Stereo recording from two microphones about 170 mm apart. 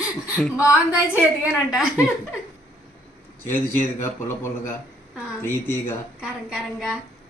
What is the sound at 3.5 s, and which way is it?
Speech, 15° left (ahead or behind).